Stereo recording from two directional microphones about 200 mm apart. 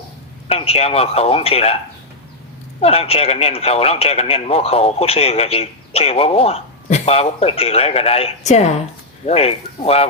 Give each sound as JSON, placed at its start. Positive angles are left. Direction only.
{"t": 0.4, "sound": "speech", "side_deg": 30}
{"t": 2.8, "sound": "speech", "side_deg": 30}